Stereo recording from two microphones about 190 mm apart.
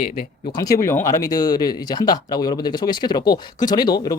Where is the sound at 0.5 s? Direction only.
20° left (ahead or behind).